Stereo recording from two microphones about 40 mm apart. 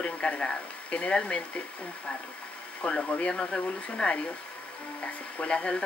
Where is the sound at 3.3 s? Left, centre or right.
Centre.